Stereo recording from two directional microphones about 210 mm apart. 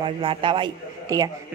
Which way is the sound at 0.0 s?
25° right (ahead or behind).